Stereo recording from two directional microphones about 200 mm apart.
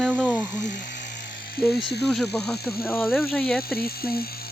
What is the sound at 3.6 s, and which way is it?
Speech, 50° left (ahead or behind).